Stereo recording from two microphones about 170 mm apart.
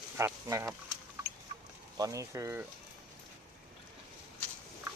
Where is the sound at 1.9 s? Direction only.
20° right (ahead or behind).